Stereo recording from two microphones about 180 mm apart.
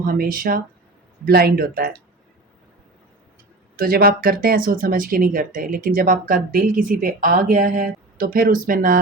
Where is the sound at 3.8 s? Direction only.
55° right (ahead or behind).